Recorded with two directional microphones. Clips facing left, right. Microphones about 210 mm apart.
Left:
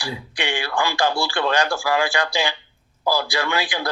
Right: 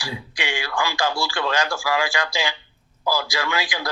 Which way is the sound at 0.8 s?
55° left (ahead or behind).